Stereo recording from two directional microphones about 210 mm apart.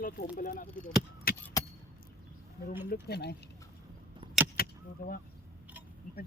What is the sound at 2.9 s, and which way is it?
Speech, 50° left (ahead or behind).